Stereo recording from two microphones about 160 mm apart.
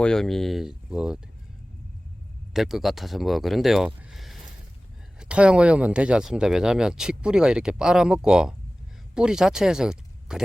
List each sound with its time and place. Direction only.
0.0 s speech: 5° left (ahead or behind)
2.5 s speech: centre (ahead or behind)